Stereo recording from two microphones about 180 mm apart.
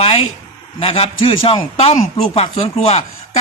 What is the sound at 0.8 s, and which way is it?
A man's voice, 30° left (ahead or behind).